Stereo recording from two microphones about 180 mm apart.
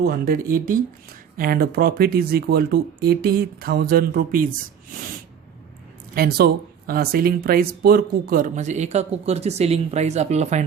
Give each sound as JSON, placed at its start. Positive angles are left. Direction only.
{"t": 0.0, "sound": "speech", "side_deg": -55}
{"t": 6.1, "sound": "speech", "side_deg": -60}